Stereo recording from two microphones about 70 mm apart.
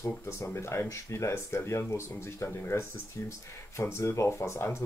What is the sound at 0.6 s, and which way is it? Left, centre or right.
Speech, left.